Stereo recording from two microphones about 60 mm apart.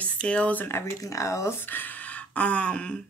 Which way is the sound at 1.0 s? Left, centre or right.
Left.